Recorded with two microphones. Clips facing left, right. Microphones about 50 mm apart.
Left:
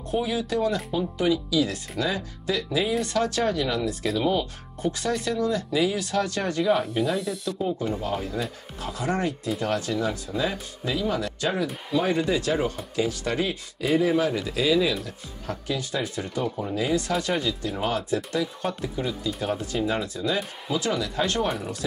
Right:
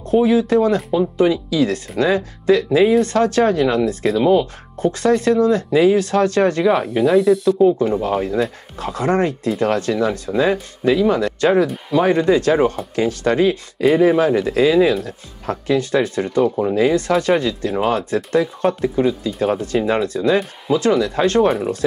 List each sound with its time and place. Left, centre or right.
0.1 s speech: right
7.6 s speech: right
8.2 s speech: right
16.7 s speech: right
19.4 s speech: right